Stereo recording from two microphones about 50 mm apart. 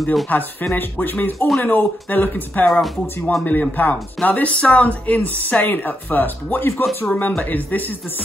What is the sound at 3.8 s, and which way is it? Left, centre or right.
Speech, left.